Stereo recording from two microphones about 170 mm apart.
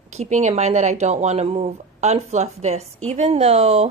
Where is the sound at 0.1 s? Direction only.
45° right (ahead or behind).